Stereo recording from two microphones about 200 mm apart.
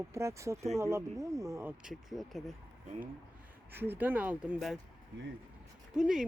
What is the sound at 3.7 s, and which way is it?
Speech, 10° right (ahead or behind).